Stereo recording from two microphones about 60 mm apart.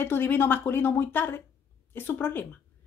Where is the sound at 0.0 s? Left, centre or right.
Left.